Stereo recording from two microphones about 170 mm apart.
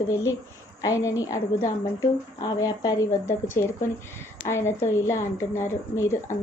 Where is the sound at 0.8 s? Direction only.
20° left (ahead or behind).